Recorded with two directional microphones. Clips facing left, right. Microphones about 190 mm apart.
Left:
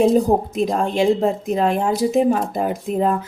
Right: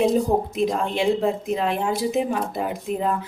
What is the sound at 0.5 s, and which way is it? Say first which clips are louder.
Speech: left 3 dB; 45° left (ahead or behind).